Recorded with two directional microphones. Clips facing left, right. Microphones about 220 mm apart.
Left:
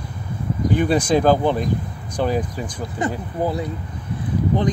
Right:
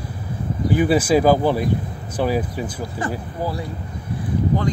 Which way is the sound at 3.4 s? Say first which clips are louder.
Left 5 dB; 20° left (ahead or behind).